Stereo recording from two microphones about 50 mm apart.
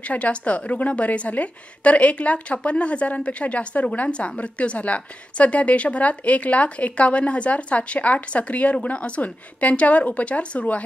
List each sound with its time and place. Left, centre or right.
0.0 s a woman's voice: left